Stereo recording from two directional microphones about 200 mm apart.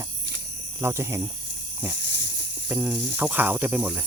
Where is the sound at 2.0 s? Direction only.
60° right (ahead or behind).